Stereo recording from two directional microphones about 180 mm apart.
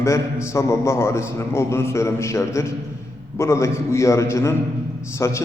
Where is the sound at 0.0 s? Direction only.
15° left (ahead or behind).